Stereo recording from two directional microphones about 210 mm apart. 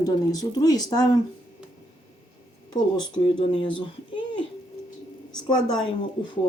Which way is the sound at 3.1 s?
25° left (ahead or behind).